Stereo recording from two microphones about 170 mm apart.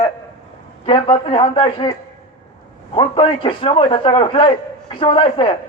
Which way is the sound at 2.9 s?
30° left (ahead or behind).